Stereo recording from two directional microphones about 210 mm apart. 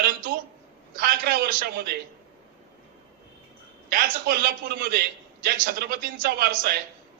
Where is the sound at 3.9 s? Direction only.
45° right (ahead or behind).